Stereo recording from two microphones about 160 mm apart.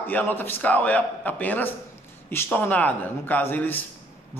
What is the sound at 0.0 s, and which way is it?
A man's voice, 10° left (ahead or behind).